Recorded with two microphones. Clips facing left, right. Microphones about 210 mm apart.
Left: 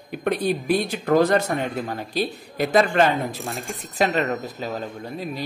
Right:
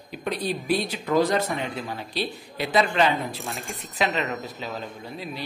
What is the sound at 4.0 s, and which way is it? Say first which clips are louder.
Speech: left 4 dB; 45° left (ahead or behind).